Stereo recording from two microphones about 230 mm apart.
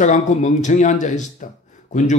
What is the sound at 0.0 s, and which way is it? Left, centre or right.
Speech, left.